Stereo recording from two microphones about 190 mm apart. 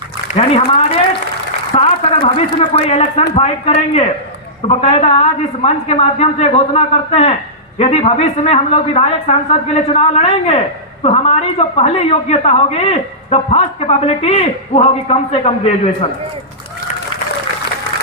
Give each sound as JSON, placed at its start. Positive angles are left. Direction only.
{"t": 0.3, "sound": "a woman's voice", "side_deg": 30}
{"t": 1.7, "sound": "a sound", "side_deg": 30}
{"t": 2.7, "sound": "a woman's voice", "side_deg": 35}